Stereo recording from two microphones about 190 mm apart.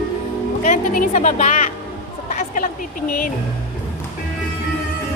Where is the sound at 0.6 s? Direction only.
45° left (ahead or behind).